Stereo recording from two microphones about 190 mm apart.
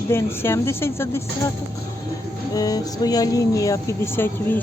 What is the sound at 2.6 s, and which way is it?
Speech, 20° left (ahead or behind).